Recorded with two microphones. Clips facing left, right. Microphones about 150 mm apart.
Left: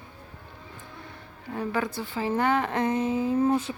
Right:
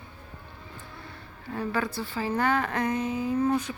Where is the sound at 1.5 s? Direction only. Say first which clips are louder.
Left 1 dB; 20° left (ahead or behind).